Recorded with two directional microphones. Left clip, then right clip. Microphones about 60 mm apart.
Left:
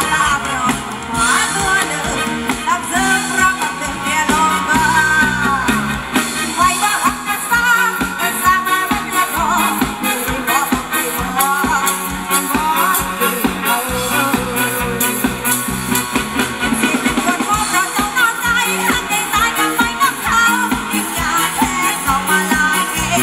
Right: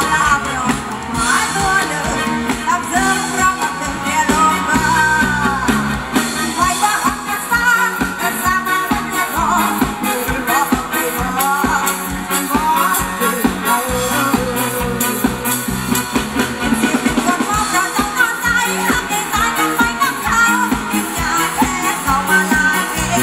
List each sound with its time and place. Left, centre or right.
0.0 s music: left
15.9 s music: left